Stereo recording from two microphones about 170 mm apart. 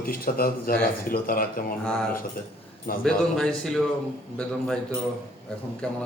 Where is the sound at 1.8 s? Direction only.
5° left (ahead or behind).